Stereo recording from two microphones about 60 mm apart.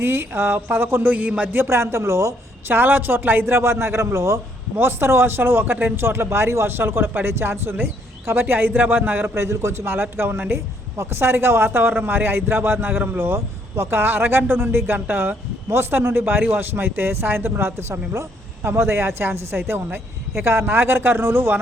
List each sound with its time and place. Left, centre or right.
0.0 s a man's voice: right
1.6 s a woman's voice: right
2.6 s a woman's voice: right
4.8 s a man's voice: right
9.3 s a man's voice: right
10.9 s a man's voice: right